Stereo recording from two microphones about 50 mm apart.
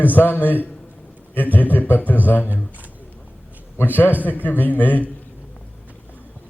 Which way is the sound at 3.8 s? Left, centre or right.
Left.